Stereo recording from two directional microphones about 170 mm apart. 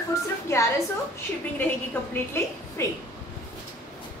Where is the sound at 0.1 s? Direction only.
15° left (ahead or behind).